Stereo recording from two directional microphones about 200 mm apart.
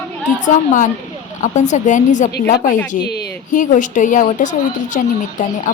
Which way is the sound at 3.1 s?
55° left (ahead or behind).